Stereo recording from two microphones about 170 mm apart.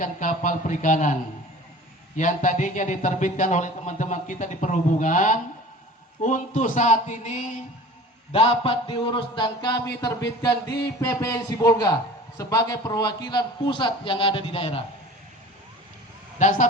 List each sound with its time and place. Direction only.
0.0 s speech: 50° left (ahead or behind)
2.1 s speech: 45° left (ahead or behind)
8.3 s a man's voice: 35° left (ahead or behind)
16.4 s speech: 45° left (ahead or behind)